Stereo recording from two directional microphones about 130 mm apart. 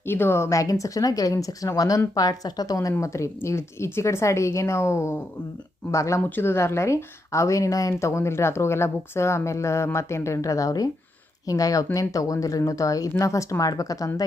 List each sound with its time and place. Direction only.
0.1 s speech: 15° left (ahead or behind)